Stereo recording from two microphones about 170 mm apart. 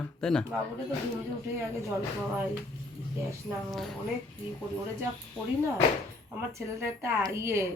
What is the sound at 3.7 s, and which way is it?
Speech, centre (ahead or behind).